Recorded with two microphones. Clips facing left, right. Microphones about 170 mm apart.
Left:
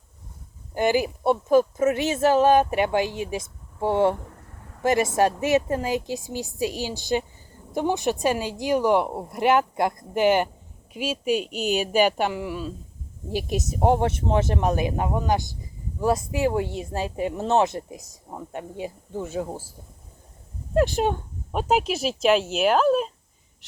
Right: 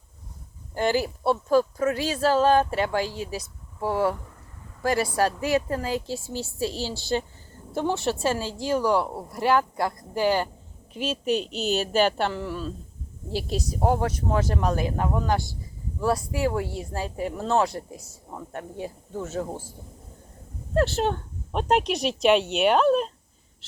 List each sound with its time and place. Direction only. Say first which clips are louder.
0.7 s a woman's voice: left 2 dB; 15° left (ahead or behind)
10.9 s a woman's voice: left 1 dB; 10° left (ahead or behind)
20.7 s speech: left 2 dB; 15° left (ahead or behind)